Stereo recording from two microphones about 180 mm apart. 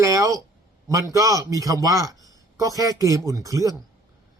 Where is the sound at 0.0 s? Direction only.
20° right (ahead or behind).